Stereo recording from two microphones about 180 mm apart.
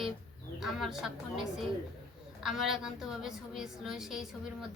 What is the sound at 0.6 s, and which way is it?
Speech, centre (ahead or behind).